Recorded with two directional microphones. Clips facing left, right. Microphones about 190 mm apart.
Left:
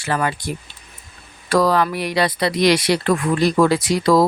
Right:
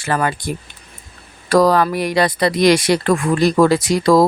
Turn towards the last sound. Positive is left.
turn(degrees=-45)  # may be behind; listen again after turning